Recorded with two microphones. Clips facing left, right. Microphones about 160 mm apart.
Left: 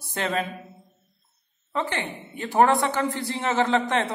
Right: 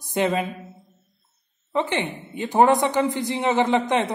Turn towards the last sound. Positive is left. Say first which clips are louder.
# right 2 dB
turn(degrees=-15)  # may be behind; listen again after turning